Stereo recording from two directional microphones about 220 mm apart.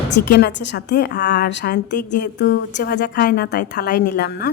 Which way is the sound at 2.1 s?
50° left (ahead or behind).